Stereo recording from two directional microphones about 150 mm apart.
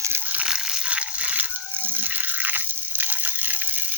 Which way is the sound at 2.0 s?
10° right (ahead or behind).